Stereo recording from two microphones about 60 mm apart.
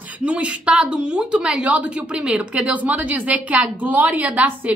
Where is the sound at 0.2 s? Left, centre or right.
Right.